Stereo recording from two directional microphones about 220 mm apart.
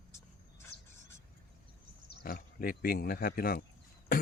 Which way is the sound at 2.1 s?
40° left (ahead or behind).